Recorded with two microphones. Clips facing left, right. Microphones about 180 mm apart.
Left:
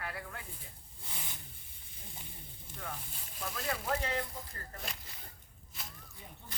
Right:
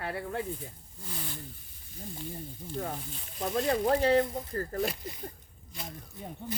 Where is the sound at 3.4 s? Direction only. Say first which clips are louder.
Right 11 dB; 35° right (ahead or behind).